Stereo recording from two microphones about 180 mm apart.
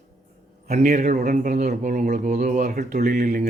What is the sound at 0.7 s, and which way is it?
Speech, 45° right (ahead or behind).